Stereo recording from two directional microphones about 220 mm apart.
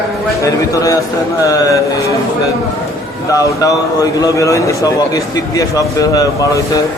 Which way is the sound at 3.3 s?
15° left (ahead or behind).